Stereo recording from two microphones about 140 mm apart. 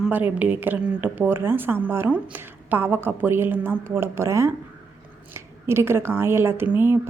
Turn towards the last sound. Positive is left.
turn(degrees=-15)  # may be behind; listen again after turning